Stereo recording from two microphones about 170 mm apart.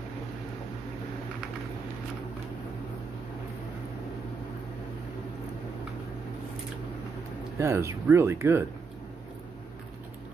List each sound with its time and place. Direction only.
7.5 s speech: 15° right (ahead or behind)